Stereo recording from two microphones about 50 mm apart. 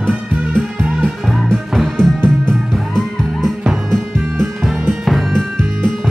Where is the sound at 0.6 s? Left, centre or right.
Centre.